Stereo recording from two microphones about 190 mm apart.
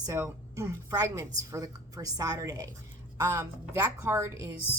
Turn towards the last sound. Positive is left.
turn(degrees=-15)  # may be behind; listen again after turning